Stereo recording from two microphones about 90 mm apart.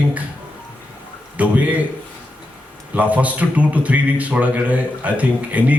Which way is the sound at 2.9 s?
15° right (ahead or behind).